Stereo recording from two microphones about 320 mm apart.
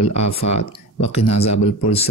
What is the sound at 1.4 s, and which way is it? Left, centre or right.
Speech, centre.